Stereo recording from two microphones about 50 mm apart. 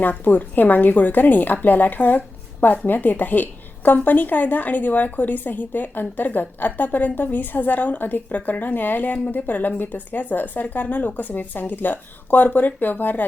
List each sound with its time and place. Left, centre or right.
0.0 s a woman's voice: left